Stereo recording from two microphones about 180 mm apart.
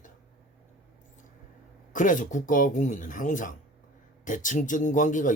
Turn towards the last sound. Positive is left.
turn(degrees=45)  # may be behind; listen again after turning